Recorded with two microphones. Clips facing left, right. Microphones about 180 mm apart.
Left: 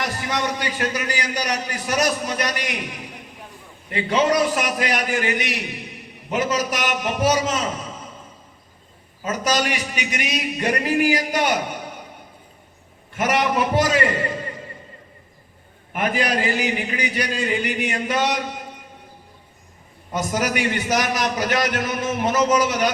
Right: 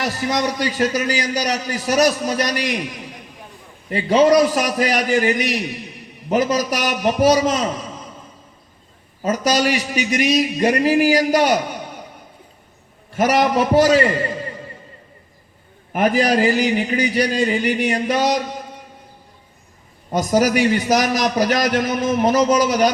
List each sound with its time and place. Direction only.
0.0 s a man's voice: 35° right (ahead or behind)
3.8 s a man's voice: 35° right (ahead or behind)
9.2 s a man's voice: 35° right (ahead or behind)
13.1 s a man's voice: 35° right (ahead or behind)
15.9 s a man's voice: 35° right (ahead or behind)
20.1 s a man's voice: 35° right (ahead or behind)